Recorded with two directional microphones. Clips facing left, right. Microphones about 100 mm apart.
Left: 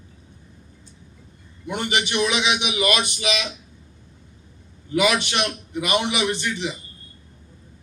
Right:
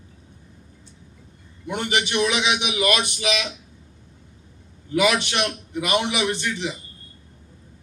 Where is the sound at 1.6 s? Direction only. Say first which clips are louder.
Even; 20° left (ahead or behind).